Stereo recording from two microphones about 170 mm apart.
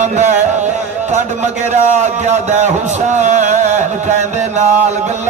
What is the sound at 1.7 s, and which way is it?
Music, 45° right (ahead or behind).